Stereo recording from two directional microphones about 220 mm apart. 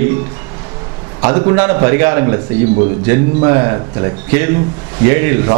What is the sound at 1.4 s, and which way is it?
Speech, 10° right (ahead or behind).